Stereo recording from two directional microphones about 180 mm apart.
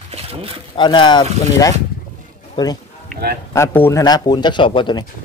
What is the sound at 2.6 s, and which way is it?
Speech, 25° left (ahead or behind).